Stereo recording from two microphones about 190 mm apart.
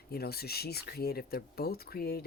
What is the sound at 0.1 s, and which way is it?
Speech, 55° left (ahead or behind).